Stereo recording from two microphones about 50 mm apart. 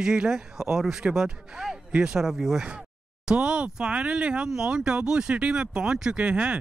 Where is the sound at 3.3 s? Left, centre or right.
Centre.